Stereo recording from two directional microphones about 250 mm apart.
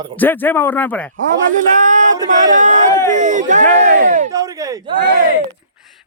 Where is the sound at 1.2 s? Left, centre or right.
Right.